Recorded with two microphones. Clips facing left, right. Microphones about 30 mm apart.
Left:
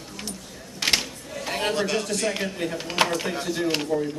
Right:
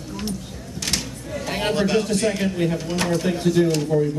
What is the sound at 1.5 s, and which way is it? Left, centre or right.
A man's voice, centre.